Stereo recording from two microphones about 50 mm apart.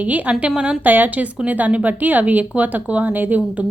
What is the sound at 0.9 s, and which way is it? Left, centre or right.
A woman's voice, right.